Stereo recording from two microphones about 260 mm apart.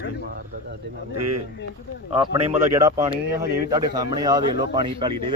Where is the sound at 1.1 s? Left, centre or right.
Right.